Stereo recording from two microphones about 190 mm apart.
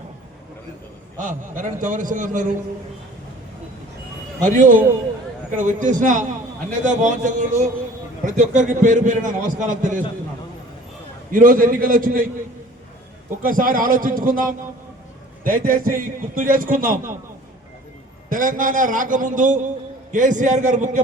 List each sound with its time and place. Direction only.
1.2 s a man's voice: 45° right (ahead or behind)
4.5 s a man's voice: 45° right (ahead or behind)
11.3 s a man's voice: 45° right (ahead or behind)
13.4 s a man's voice: 45° right (ahead or behind)
18.3 s a man's voice: 45° right (ahead or behind)